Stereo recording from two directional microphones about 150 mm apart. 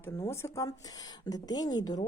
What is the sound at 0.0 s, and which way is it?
Speech, 20° left (ahead or behind).